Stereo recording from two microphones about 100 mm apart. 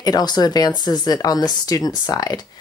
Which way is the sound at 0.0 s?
45° left (ahead or behind).